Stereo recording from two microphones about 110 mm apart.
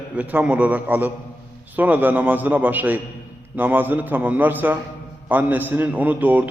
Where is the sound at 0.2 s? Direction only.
15° right (ahead or behind).